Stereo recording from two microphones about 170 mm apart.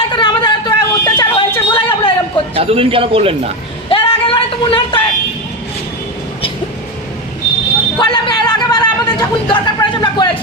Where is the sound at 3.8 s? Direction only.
30° left (ahead or behind).